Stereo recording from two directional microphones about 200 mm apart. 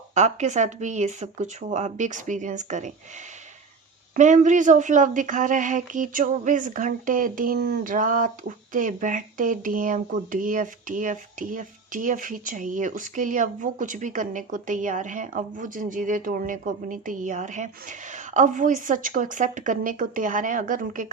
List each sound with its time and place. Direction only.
0.1 s a woman's voice: 35° right (ahead or behind)
4.1 s a woman's voice: 40° right (ahead or behind)